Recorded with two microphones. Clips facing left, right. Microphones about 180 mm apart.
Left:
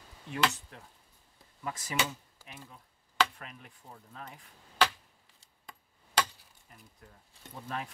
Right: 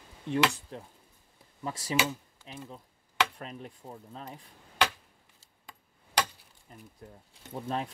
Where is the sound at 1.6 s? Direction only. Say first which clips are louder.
Right 4 dB; 30° right (ahead or behind).